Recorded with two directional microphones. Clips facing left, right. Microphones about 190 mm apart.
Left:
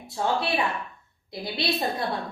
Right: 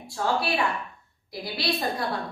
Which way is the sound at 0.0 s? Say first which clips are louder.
Even; 20° left (ahead or behind).